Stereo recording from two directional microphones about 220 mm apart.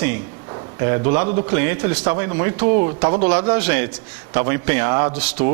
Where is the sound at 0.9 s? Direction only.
20° right (ahead or behind).